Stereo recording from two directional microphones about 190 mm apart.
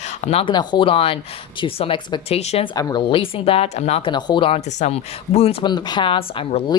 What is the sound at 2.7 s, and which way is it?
Speech, 20° left (ahead or behind).